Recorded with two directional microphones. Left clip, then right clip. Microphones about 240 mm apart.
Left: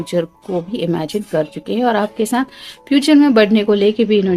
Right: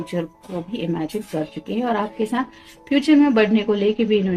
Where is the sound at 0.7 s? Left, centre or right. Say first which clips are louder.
Left 3 dB; left.